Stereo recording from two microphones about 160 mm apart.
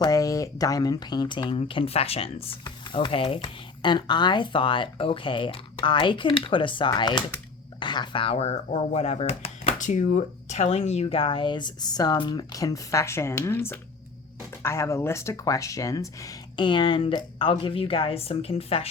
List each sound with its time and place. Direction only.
0.0 s speech: 20° left (ahead or behind); by 18.9 s 35° left (ahead or behind)